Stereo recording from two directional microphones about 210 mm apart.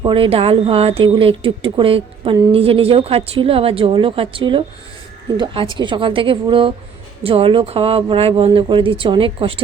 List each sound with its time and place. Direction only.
0.0 s speech: 25° right (ahead or behind)